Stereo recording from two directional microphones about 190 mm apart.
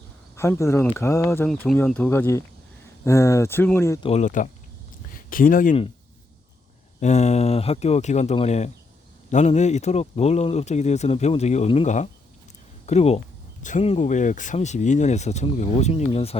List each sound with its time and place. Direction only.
0.3 s speech: 15° left (ahead or behind)
1.5 s speech: centre (ahead or behind)
4.0 s speech: 35° left (ahead or behind)
7.0 s speech: 35° left (ahead or behind)